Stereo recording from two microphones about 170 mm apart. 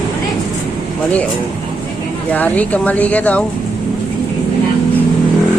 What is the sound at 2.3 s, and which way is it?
Speech, 10° left (ahead or behind).